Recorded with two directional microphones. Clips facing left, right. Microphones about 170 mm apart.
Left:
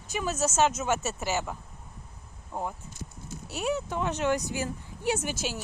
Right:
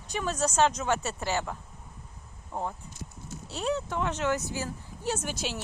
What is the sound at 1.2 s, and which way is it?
Speech, 15° left (ahead or behind).